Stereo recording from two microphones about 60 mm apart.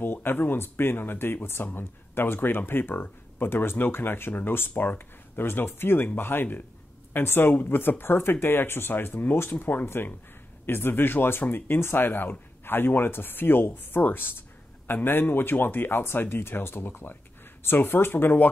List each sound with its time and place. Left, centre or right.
0.0 s speech: left